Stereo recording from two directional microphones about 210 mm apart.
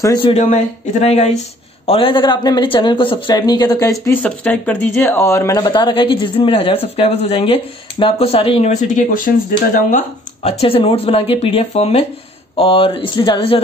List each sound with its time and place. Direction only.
0.0 s speech: 15° left (ahead or behind)
0.3 s speech: 35° left (ahead or behind)
10.6 s speech: 25° left (ahead or behind)